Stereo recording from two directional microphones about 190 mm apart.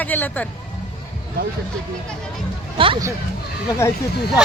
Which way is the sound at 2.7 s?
25° right (ahead or behind).